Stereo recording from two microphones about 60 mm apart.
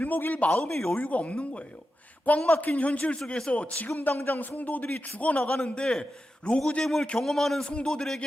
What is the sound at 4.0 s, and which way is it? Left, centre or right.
A man's voice, left.